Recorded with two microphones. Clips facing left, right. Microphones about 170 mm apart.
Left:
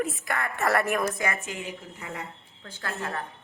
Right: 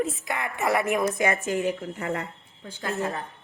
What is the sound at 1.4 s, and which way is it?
Speech, 45° right (ahead or behind).